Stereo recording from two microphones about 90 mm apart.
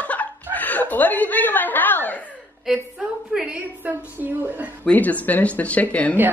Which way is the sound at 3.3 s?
5° right (ahead or behind).